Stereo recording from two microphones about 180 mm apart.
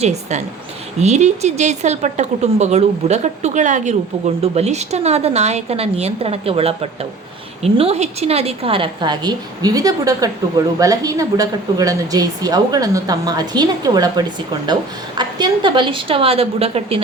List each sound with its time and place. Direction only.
0.0 s a woman's voice: 40° right (ahead or behind)